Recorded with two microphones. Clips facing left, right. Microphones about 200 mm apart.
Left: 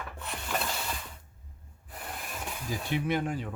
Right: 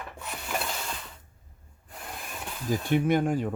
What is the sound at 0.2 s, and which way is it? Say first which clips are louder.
Rub: right 1 dB; 5° right (ahead or behind).